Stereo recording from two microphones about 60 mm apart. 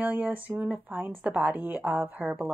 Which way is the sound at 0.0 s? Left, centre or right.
Right.